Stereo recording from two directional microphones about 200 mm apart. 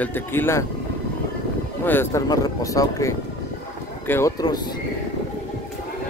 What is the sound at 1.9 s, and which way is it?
A man's voice, 10° left (ahead or behind).